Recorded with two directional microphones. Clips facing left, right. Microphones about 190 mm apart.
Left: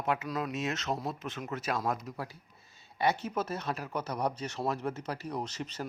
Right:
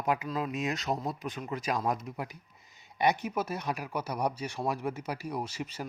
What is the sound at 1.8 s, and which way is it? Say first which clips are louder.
Speech: right 2 dB; 15° right (ahead or behind).